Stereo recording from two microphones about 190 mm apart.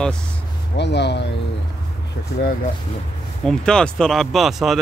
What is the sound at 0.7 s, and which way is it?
Speech, 65° left (ahead or behind).